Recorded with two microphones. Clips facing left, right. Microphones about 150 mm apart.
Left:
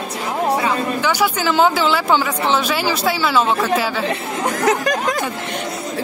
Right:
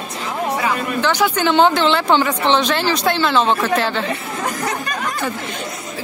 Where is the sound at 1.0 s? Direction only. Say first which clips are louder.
Right 4 dB; 5° left (ahead or behind).